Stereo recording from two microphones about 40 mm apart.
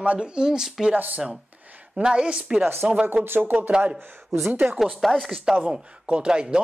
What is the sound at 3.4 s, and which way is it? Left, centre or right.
Speech, right.